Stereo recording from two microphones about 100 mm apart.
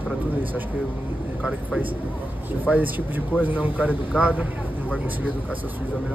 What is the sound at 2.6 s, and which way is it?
A man's voice, 15° right (ahead or behind).